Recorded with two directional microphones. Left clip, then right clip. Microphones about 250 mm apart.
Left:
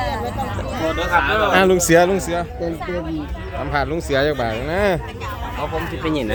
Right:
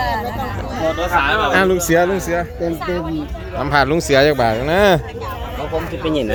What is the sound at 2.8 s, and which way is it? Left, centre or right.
Speech, right.